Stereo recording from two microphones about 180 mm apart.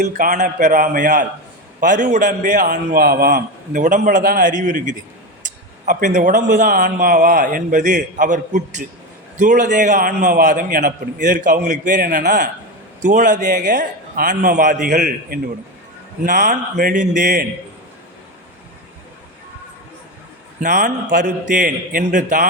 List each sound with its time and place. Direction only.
0.0 s a man's voice: 45° right (ahead or behind)
20.6 s a man's voice: 45° right (ahead or behind)